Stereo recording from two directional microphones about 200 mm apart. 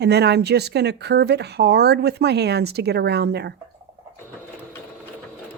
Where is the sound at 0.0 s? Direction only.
55° right (ahead or behind).